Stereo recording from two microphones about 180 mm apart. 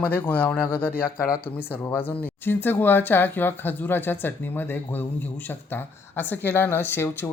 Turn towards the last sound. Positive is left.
turn(degrees=10)  # may be behind; listen again after turning